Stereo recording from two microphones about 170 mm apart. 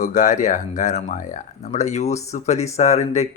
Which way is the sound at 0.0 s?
50° left (ahead or behind).